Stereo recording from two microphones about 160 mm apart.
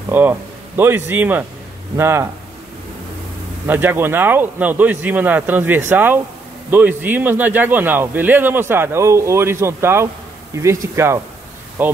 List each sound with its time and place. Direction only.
0.1 s speech: 10° right (ahead or behind)
3.6 s speech: 10° right (ahead or behind)